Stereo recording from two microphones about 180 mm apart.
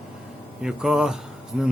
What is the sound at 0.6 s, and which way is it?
A man's voice, centre (ahead or behind).